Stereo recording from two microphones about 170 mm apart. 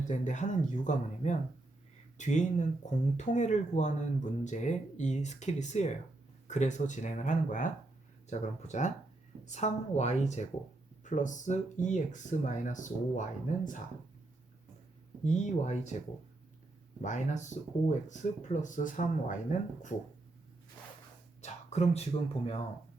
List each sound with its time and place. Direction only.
0.0 s speech: 45° left (ahead or behind)
15.2 s speech: 45° left (ahead or behind)
17.0 s speech: 45° left (ahead or behind)
21.4 s speech: 40° left (ahead or behind)